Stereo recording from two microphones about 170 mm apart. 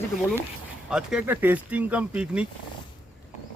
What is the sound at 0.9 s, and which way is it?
Speech, 5° right (ahead or behind).